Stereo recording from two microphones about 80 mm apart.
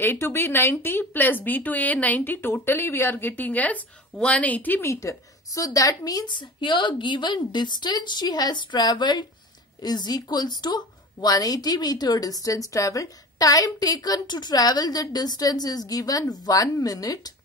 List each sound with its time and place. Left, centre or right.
0.0 s speech: left
4.8 s a woman's voice: left
6.2 s a woman's voice: left